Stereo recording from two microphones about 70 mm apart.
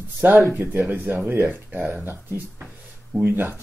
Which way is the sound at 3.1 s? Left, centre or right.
Right.